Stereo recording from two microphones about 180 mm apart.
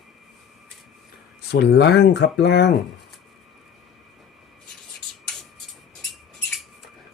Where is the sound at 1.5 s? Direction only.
75° left (ahead or behind).